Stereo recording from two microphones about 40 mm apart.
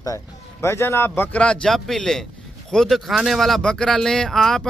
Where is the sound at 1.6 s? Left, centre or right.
Centre.